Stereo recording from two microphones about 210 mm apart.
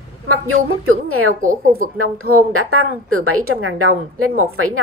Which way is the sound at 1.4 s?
40° right (ahead or behind).